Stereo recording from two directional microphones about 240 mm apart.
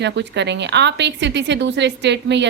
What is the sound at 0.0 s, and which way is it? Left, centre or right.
A woman's voice, right.